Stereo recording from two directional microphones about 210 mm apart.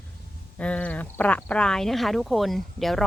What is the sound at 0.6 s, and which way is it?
Speech, 5° left (ahead or behind).